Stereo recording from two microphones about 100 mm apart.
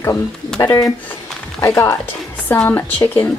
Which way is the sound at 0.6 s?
35° left (ahead or behind).